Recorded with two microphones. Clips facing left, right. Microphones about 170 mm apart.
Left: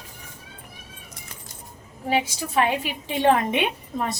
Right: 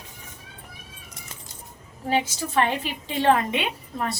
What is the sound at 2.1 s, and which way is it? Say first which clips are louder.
A woman's voice: even; 10° left (ahead or behind).